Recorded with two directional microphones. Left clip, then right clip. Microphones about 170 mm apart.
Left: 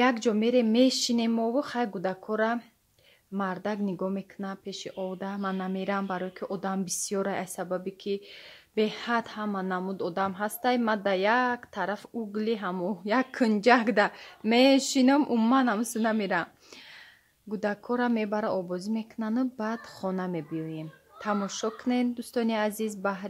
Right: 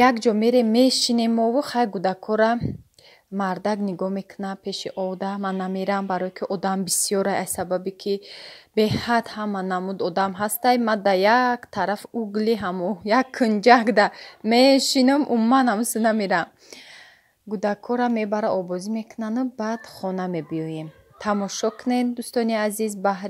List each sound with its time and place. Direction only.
0.0 s speech: 20° right (ahead or behind)
15.5 s speech: 25° right (ahead or behind)
17.5 s speech: 20° right (ahead or behind)